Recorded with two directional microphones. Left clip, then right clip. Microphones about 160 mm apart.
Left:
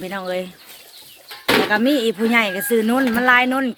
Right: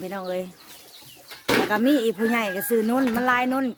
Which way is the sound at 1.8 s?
10° right (ahead or behind).